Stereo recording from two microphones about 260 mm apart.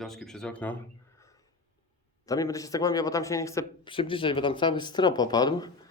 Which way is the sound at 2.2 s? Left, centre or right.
Centre.